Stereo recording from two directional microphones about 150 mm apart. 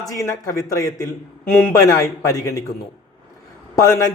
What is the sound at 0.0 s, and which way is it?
A man's voice, 20° left (ahead or behind).